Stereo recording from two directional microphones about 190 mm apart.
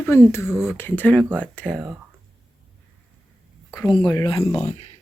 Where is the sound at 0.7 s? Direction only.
10° left (ahead or behind).